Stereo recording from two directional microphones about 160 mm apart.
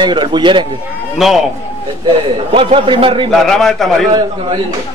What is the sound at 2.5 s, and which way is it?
Speech, 35° right (ahead or behind).